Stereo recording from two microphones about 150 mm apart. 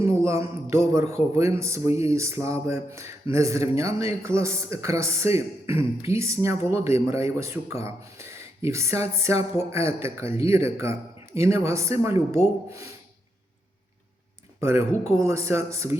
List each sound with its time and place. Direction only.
0.0 s a sound: 15° right (ahead or behind)
1.1 s speech: 20° right (ahead or behind)
14.6 s speech: 15° right (ahead or behind)